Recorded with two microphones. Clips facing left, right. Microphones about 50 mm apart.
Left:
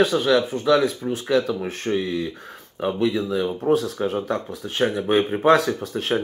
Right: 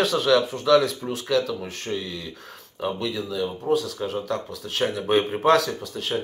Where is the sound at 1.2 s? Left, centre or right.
Left.